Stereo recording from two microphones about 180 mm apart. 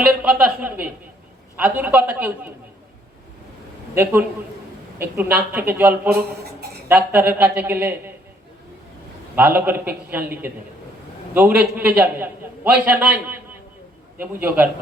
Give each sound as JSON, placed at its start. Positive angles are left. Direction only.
{"t": 0.0, "sound": "a woman's voice", "side_deg": -5}
{"t": 3.9, "sound": "a man's voice", "side_deg": -10}
{"t": 6.1, "sound": "speech", "side_deg": -60}
{"t": 6.8, "sound": "a man's voice", "side_deg": -10}
{"t": 9.3, "sound": "a man's voice", "side_deg": -10}